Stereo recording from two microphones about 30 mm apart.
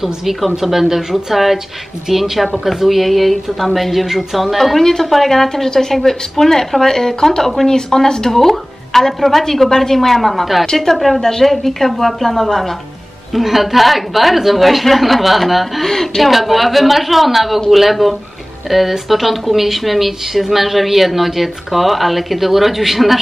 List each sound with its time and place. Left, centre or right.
0.0 s speech: centre
4.7 s a woman's voice: centre
11.2 s a woman's voice: centre
11.5 s speech: centre
13.3 s speech: centre
15.8 s a woman's voice: centre
16.3 s speech: centre